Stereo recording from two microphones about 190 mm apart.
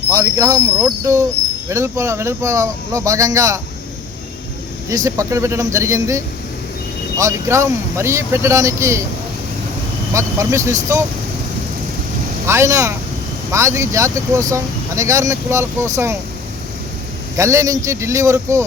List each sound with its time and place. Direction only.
0.1 s speech: 15° right (ahead or behind)
4.9 s speech: 15° right (ahead or behind)
10.1 s speech: 15° right (ahead or behind)
12.5 s speech: 15° right (ahead or behind)
17.3 s speech: 15° right (ahead or behind)